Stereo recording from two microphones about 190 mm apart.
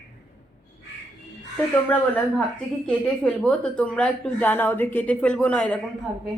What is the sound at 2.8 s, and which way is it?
A woman's voice, 5° left (ahead or behind).